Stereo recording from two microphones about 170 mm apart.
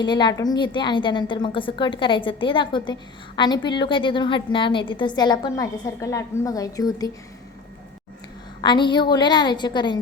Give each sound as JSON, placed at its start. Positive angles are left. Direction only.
{"t": 0.0, "sound": "a woman's voice", "side_deg": 25}
{"t": 8.6, "sound": "a woman's voice", "side_deg": 25}